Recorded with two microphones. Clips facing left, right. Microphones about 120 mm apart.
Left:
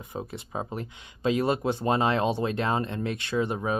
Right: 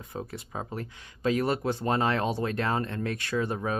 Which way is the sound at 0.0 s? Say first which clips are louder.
Left 1 dB; 20° left (ahead or behind).